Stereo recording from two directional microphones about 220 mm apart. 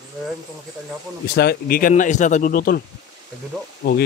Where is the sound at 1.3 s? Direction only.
45° left (ahead or behind).